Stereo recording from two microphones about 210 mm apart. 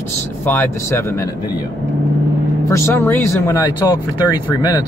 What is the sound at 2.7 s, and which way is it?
Speech, 10° left (ahead or behind).